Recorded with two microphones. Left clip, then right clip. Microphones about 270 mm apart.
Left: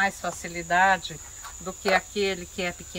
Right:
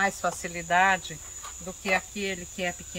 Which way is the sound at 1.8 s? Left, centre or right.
Centre.